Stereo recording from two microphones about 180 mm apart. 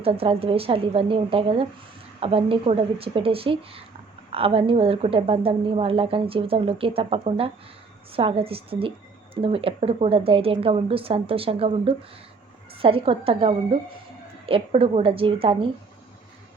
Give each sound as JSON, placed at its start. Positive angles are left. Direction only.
{"t": 0.0, "sound": "speech", "side_deg": -30}